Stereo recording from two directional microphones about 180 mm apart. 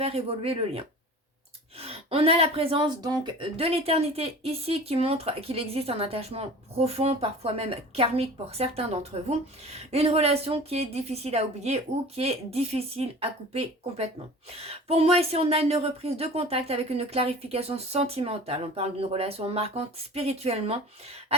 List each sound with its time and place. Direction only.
0.0 s speech: 35° right (ahead or behind)